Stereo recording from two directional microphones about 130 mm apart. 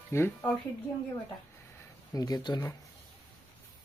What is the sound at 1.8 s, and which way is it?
Speech, 30° left (ahead or behind).